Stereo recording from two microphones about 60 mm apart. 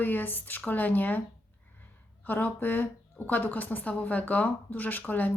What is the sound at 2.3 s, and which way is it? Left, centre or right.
Speech, left.